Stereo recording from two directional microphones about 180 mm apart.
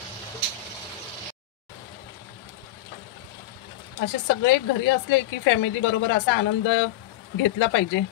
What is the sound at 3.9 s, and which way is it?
A woman's voice, 85° left.